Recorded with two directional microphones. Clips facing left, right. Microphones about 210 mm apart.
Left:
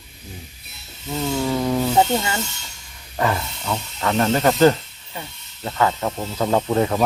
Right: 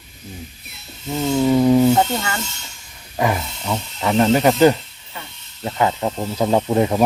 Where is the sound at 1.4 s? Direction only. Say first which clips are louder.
Right 9 dB; 15° right (ahead or behind).